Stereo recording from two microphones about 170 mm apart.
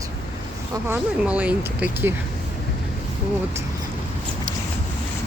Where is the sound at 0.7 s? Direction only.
10° right (ahead or behind).